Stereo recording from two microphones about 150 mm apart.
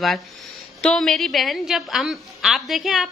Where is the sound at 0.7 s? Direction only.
5° left (ahead or behind).